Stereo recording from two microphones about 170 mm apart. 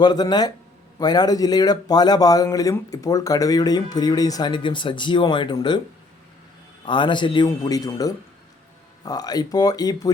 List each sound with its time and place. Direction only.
0.0 s speech: 25° left (ahead or behind)
6.8 s speech: 30° left (ahead or behind)